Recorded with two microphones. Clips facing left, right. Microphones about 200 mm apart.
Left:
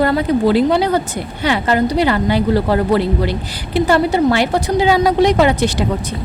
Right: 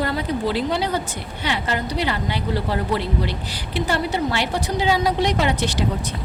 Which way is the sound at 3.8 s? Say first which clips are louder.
Left 9 dB; 90° left.